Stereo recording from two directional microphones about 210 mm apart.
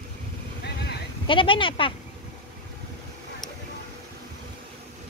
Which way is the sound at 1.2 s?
25° left (ahead or behind).